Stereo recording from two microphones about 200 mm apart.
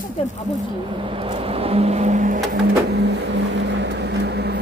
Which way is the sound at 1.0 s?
25° right (ahead or behind).